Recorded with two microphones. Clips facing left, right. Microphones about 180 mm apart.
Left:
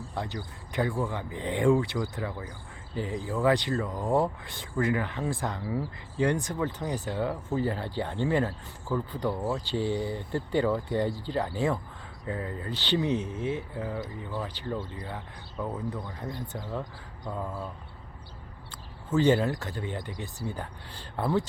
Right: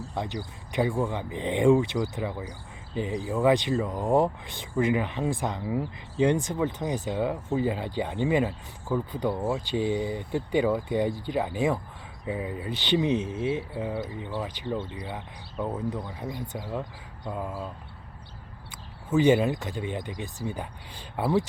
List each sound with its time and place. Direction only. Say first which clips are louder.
0.1 s speech: right 2 dB; 20° right (ahead or behind)
19.1 s speech: right 2 dB; 15° right (ahead or behind)